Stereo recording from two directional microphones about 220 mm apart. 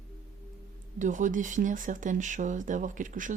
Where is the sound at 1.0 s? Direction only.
35° right (ahead or behind).